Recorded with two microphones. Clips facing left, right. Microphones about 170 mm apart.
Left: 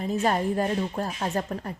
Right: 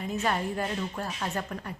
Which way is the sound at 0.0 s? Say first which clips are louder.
Left 5 dB; 35° left (ahead or behind).